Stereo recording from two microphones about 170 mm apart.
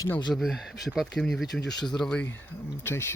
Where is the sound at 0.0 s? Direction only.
20° left (ahead or behind).